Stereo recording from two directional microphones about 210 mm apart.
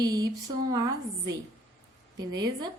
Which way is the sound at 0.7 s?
15° right (ahead or behind).